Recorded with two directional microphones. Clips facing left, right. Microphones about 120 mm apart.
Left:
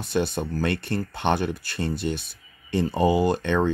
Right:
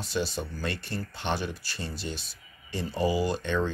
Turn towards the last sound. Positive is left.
turn(degrees=60)  # may be behind; listen again after turning